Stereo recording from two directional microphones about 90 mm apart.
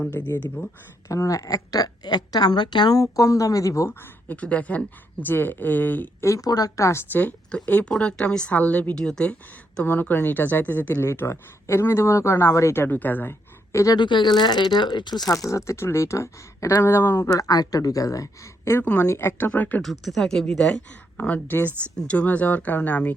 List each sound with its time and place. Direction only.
0.2 s speech: 30° left (ahead or behind)
1.1 s a woman's voice: 40° left (ahead or behind); by 3.0 s 55° left (ahead or behind)
3.0 s speech: 35° left (ahead or behind)
3.8 s speech: 15° left (ahead or behind)
6.2 s speech: 40° left (ahead or behind)
7.1 s a woman's voice: 20° left (ahead or behind)
13.9 s speech: 55° left (ahead or behind)
15.3 s speech: 35° left (ahead or behind)
17.2 s speech: 40° left (ahead or behind)
19.4 s speech: 20° left (ahead or behind)
19.8 s a woman's voice: centre (ahead or behind); by 23.1 s 15° left (ahead or behind)